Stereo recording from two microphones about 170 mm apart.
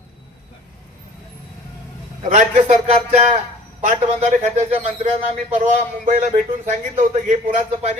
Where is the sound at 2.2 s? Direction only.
50° right (ahead or behind).